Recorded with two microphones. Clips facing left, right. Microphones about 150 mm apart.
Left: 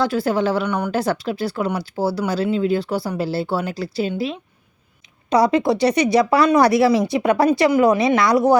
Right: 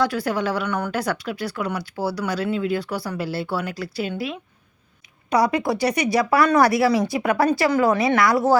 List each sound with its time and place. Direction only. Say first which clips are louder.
0.0 s speech: left 3 dB; 25° left (ahead or behind)
5.3 s speech: left 4 dB; 25° left (ahead or behind)